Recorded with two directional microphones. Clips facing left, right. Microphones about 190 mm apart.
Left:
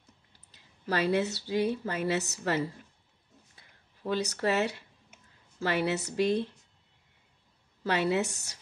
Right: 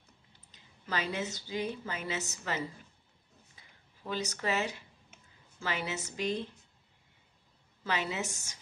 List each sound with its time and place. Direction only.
0.5 s a woman's voice: 65° left (ahead or behind)
4.2 s a woman's voice: 65° left (ahead or behind)
7.8 s a woman's voice: 60° left (ahead or behind)